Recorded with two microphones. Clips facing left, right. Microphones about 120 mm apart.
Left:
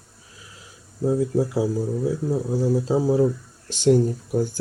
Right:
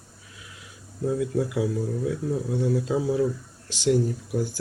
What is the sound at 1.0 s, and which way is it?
Speech, 30° left (ahead or behind).